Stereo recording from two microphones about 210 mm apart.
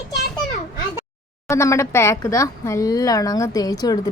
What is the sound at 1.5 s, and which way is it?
A woman's voice, 15° left (ahead or behind).